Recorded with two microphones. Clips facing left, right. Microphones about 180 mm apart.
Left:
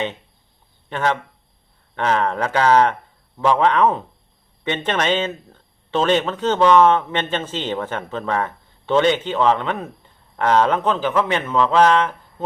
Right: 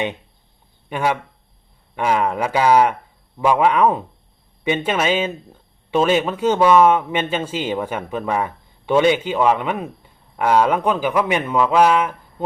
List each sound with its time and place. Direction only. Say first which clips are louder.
0.9 s speech: right 1 dB; 10° right (ahead or behind)